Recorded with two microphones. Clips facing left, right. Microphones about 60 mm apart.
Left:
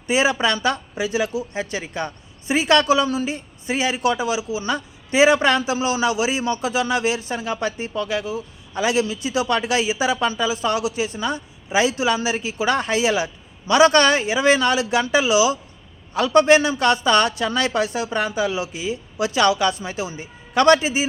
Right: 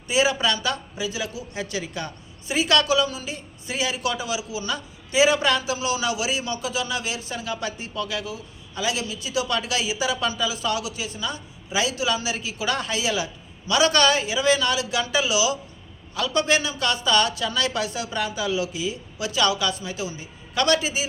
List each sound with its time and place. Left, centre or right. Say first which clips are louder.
0.1 s a man's voice: left 3 dB; left